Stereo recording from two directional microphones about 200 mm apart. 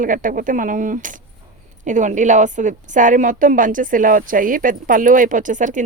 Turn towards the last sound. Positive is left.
turn(degrees=-40)  # may be behind; listen again after turning